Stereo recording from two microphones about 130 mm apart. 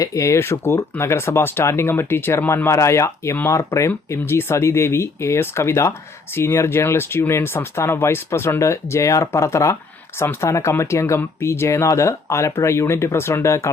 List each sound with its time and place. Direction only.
0.0 s speech: 25° left (ahead or behind)